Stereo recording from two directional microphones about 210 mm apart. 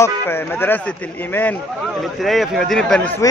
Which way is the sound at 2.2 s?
Centre (ahead or behind).